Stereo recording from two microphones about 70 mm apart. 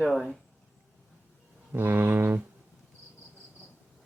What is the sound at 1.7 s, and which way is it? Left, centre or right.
Speech, right.